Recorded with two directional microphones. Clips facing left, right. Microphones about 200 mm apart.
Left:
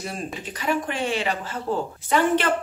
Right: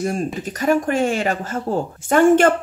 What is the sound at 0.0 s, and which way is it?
Speech, 45° right (ahead or behind).